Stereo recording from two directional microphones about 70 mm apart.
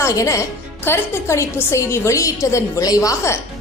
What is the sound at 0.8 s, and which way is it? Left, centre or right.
A woman's voice, left.